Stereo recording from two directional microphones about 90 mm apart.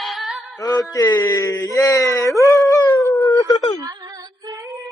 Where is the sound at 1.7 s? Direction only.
40° left (ahead or behind).